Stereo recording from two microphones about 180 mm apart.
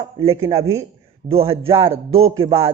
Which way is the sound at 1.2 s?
30° right (ahead or behind).